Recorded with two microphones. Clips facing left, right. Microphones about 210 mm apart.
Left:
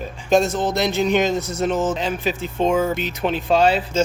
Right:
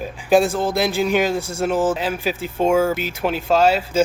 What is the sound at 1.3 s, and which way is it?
Speech, 30° right (ahead or behind).